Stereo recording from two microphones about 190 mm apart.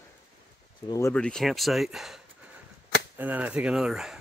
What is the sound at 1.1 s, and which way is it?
Speech, 5° left (ahead or behind).